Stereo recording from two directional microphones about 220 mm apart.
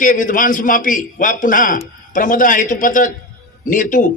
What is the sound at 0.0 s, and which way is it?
A man's voice, 35° left (ahead or behind).